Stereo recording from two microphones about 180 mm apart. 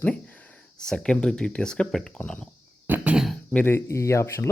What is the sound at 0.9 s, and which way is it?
Speech, 5° left (ahead or behind).